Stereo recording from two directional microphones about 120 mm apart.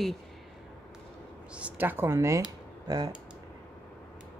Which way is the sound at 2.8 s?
35° right (ahead or behind).